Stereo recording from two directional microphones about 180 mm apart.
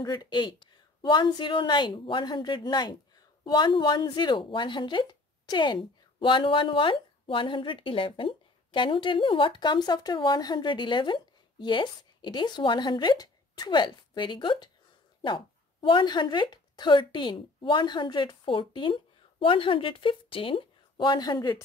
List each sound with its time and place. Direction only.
0.0 s speech: 25° left (ahead or behind)